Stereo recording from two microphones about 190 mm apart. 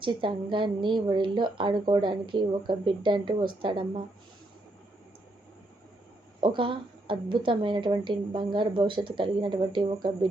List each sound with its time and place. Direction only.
0.0 s a woman's voice: 25° right (ahead or behind)
6.4 s a woman's voice: 25° right (ahead or behind)